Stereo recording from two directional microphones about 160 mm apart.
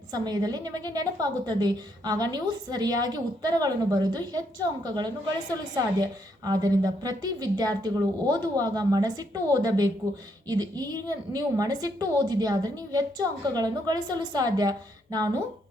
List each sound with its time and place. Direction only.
0.1 s a woman's voice: 25° right (ahead or behind)